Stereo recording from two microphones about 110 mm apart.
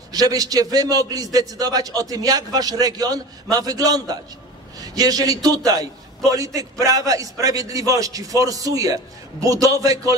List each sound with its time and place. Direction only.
0.1 s a man's voice: 35° right (ahead or behind)